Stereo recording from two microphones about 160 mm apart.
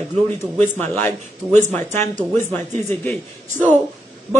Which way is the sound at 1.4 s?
Centre (ahead or behind).